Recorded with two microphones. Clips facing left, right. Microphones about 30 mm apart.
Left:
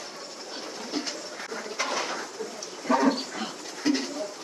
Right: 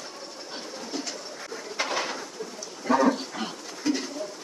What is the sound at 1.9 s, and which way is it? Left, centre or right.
Bird, centre.